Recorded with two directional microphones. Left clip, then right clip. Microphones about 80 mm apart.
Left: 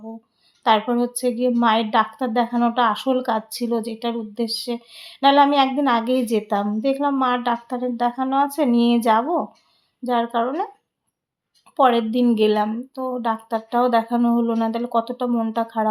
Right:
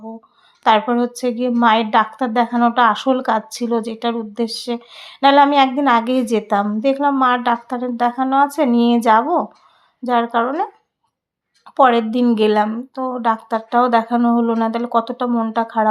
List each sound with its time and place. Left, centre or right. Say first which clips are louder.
0.6 s a woman's voice: right 4 dB; right
15.6 s a woman's voice: right 5 dB; right